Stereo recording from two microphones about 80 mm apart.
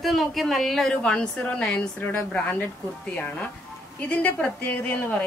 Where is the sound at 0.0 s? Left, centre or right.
Centre.